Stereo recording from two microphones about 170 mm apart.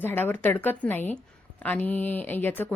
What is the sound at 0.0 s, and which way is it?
Speech, 10° left (ahead or behind).